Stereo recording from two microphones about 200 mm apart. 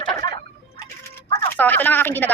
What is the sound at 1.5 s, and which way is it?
Speech, 10° left (ahead or behind).